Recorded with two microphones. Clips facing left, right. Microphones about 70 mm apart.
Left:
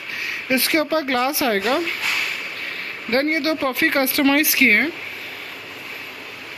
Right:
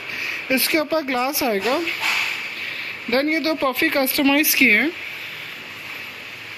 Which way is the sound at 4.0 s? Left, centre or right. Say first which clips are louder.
Even; left.